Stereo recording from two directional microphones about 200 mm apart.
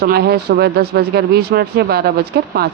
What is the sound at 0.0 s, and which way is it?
Speech, 50° right (ahead or behind).